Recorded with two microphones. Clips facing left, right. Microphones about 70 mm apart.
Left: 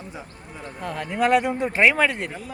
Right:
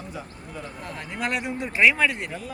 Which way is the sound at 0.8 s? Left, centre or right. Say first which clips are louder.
Left 9 dB; left.